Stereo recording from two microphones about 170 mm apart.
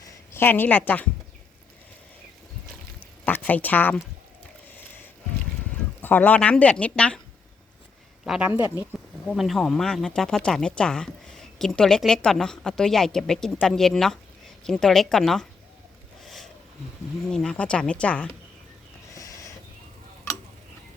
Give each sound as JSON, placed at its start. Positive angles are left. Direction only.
{"t": 0.3, "sound": "speech", "side_deg": 10}
{"t": 3.2, "sound": "speech", "side_deg": 10}
{"t": 6.0, "sound": "speech", "side_deg": 10}
{"t": 8.2, "sound": "speech", "side_deg": 0}
{"t": 16.2, "sound": "a sound", "side_deg": 0}
{"t": 17.3, "sound": "speech", "side_deg": 5}
{"t": 19.1, "sound": "a sound", "side_deg": 20}